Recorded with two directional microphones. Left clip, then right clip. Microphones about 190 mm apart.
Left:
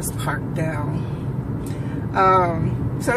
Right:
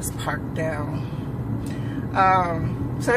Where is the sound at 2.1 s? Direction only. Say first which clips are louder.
Left 2 dB; 20° right (ahead or behind).